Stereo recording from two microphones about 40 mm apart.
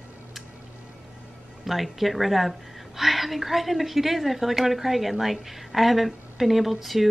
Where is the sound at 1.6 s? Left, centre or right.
Centre.